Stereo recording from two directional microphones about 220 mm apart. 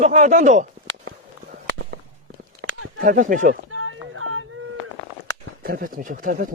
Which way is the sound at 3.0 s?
35° right (ahead or behind).